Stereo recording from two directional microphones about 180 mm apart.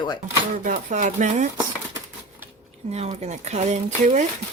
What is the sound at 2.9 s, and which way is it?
Speech, 35° right (ahead or behind).